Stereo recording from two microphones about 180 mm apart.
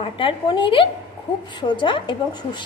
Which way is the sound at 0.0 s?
25° left (ahead or behind).